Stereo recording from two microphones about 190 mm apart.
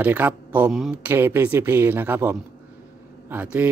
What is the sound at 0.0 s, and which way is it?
A man's voice, 10° right (ahead or behind).